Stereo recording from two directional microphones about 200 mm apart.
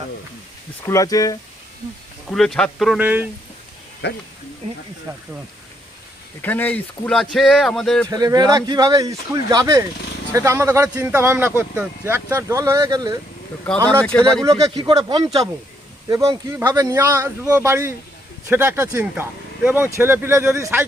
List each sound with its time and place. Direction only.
0.9 s speech: 15° left (ahead or behind)
2.2 s speech: centre (ahead or behind)
4.0 s speech: 55° left (ahead or behind)
6.4 s speech: 10° left (ahead or behind)
8.1 s speech: 20° right (ahead or behind)
14.0 s speech: 5° left (ahead or behind)
14.8 s speech: 20° right (ahead or behind)